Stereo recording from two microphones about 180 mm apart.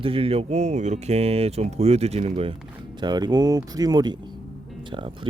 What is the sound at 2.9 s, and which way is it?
Speech, 25° right (ahead or behind).